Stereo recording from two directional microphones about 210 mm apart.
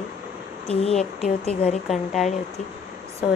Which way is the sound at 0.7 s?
30° left (ahead or behind).